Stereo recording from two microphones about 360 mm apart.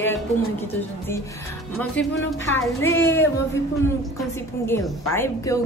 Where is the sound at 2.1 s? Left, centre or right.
Left.